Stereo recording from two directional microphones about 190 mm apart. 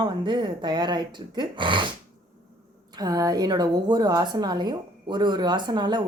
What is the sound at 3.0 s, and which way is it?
A woman's voice, 20° right (ahead or behind).